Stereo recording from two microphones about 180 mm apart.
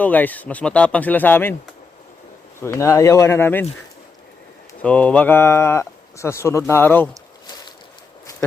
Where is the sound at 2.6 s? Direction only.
15° left (ahead or behind).